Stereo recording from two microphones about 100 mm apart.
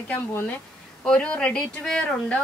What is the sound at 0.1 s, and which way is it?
A woman's voice, 20° left (ahead or behind).